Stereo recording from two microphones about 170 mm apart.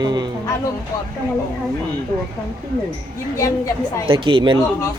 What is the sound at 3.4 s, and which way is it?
Speech, 20° left (ahead or behind).